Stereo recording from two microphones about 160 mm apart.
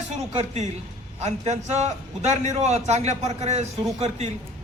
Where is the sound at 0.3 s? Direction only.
45° right (ahead or behind).